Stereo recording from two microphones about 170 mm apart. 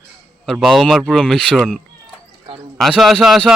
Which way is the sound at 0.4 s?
Centre (ahead or behind).